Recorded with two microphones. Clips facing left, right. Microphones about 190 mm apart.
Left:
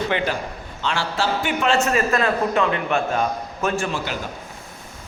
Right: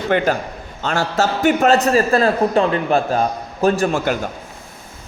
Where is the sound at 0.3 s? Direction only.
45° right (ahead or behind).